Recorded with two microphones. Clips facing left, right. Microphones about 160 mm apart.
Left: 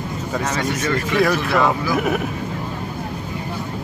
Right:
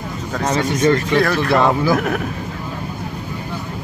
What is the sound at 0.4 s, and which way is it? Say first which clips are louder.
Speech: right 6 dB; 35° right (ahead or behind).